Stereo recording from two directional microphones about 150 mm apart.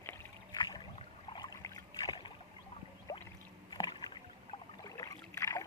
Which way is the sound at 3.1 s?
25° left (ahead or behind).